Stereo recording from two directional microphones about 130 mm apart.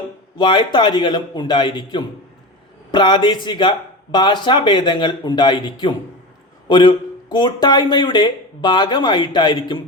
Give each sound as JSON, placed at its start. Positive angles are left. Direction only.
{"t": 0.3, "sound": "speech", "side_deg": 40}